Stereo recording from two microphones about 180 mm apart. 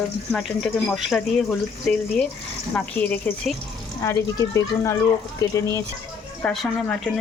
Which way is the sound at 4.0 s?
15° left (ahead or behind).